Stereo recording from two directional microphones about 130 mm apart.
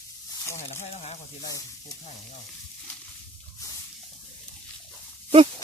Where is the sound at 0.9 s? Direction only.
50° left (ahead or behind).